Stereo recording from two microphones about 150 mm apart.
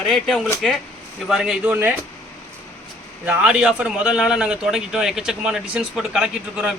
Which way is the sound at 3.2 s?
5° right (ahead or behind).